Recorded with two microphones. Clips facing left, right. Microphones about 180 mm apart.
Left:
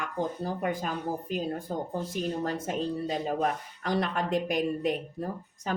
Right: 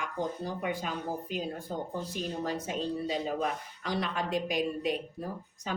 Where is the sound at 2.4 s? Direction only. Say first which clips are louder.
Left 2 dB; 50° left (ahead or behind).